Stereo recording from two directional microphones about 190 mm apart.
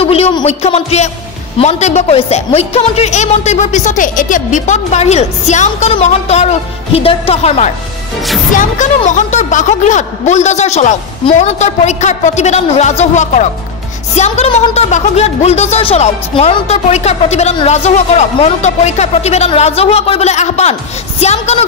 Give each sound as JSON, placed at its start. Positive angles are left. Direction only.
{"t": 0.0, "sound": "a woman's voice", "side_deg": 30}